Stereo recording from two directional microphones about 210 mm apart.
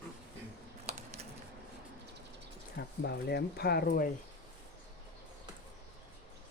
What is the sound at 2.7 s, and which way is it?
Speech, 50° left (ahead or behind).